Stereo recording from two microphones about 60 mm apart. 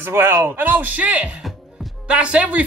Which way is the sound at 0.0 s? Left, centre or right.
Right.